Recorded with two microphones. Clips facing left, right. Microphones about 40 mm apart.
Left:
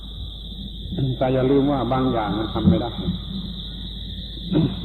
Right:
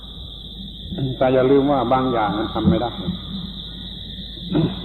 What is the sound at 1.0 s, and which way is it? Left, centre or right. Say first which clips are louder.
A man's voice: right 4 dB; centre.